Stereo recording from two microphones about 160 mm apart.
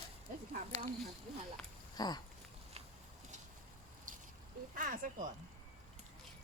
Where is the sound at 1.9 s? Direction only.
25° left (ahead or behind).